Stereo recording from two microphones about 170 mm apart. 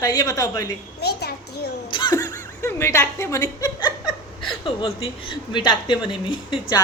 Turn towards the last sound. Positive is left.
turn(degrees=30)  # may be behind; listen again after turning